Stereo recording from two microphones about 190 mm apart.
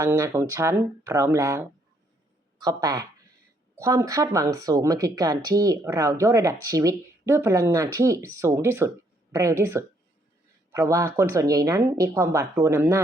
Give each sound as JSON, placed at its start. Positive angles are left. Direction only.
{"t": 0.0, "sound": "speech", "side_deg": -15}